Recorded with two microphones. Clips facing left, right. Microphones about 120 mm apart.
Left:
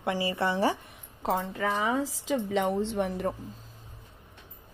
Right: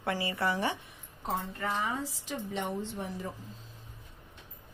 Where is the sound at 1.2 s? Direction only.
90° left; by 3.3 s 60° left (ahead or behind).